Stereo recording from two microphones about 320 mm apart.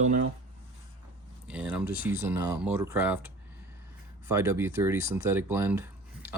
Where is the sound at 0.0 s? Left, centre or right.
Right.